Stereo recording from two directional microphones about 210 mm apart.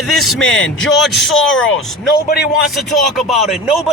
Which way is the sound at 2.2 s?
50° left (ahead or behind).